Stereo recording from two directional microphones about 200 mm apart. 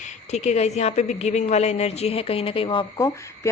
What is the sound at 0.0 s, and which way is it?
A woman's voice, 35° left (ahead or behind).